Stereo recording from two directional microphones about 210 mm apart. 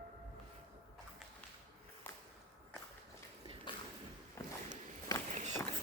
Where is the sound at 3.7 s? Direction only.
20° left (ahead or behind).